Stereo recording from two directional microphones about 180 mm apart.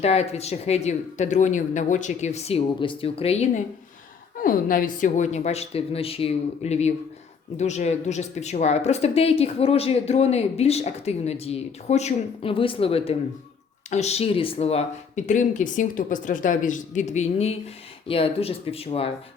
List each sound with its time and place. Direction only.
0.0 s a woman's voice: 35° left (ahead or behind)
4.4 s a woman's voice: 50° left (ahead or behind); by 19.1 s 35° left (ahead or behind)